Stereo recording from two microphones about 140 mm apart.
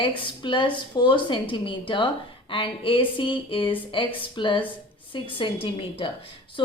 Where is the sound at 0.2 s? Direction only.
35° left (ahead or behind).